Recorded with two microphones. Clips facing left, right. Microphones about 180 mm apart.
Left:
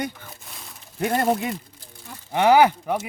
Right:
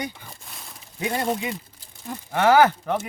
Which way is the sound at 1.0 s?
55° left (ahead or behind).